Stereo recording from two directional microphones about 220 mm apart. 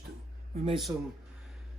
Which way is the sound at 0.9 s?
10° right (ahead or behind).